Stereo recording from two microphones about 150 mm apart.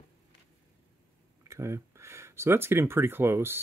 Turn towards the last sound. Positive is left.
turn(degrees=-15)  # may be behind; listen again after turning